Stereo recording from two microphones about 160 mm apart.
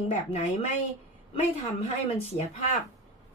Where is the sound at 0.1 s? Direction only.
45° left (ahead or behind).